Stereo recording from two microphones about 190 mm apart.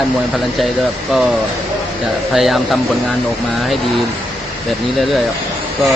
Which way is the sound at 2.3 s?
Centre (ahead or behind).